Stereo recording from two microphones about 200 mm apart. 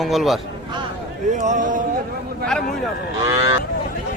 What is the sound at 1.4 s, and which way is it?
Speech, 40° right (ahead or behind).